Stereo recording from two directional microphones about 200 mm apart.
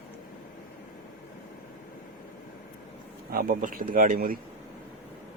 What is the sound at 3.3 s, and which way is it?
Speech, 45° right (ahead or behind).